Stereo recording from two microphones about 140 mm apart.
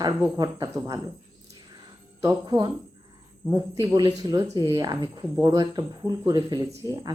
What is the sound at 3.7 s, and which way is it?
Speech, 30° right (ahead or behind).